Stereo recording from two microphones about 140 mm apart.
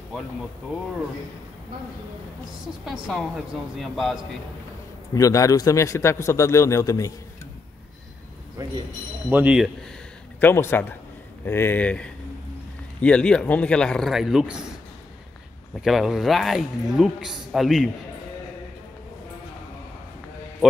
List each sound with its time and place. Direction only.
2.8 s speech: centre (ahead or behind)
5.1 s a man's voice: 25° left (ahead or behind)
8.6 s speech: 25° right (ahead or behind)
9.3 s speech: 10° right (ahead or behind)
10.4 s speech: 15° left (ahead or behind); by 14.7 s 5° right (ahead or behind)
15.7 s speech: centre (ahead or behind)